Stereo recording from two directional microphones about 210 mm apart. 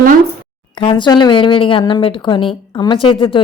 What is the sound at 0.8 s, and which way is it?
A woman's voice, 25° left (ahead or behind).